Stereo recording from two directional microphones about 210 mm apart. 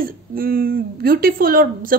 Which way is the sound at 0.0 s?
45° right (ahead or behind).